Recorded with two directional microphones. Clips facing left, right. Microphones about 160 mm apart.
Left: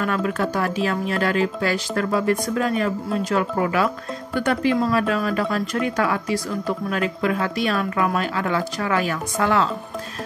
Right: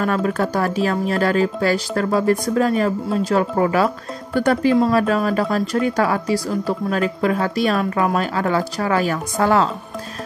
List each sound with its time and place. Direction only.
0.0 s speech: 40° right (ahead or behind)